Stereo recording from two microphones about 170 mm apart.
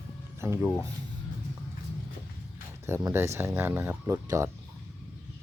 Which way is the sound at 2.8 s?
15° right (ahead or behind).